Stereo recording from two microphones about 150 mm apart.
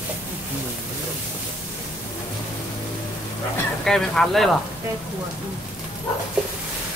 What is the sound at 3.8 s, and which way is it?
Speech, 5° left (ahead or behind).